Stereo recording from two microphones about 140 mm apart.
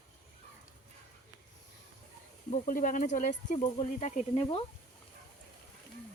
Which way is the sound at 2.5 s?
70° left (ahead or behind).